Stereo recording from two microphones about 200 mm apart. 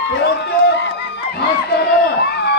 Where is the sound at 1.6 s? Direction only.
55° left (ahead or behind).